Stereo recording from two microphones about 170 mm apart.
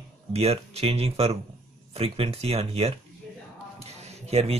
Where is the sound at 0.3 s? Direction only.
35° right (ahead or behind).